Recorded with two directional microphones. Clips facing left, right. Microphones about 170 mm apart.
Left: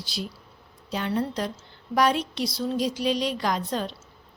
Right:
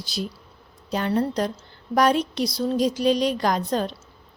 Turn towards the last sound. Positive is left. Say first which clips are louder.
# right 4 dB
turn(degrees=-45)  # may be behind; listen again after turning